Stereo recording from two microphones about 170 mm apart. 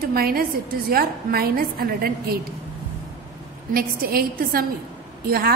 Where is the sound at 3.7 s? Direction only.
60° right (ahead or behind).